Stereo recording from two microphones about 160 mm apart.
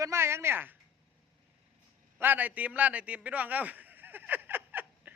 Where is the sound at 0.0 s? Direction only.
15° right (ahead or behind).